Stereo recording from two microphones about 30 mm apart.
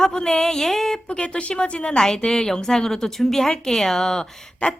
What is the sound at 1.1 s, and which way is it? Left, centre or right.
Speech, left.